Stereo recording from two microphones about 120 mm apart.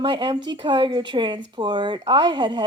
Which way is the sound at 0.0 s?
45° right (ahead or behind).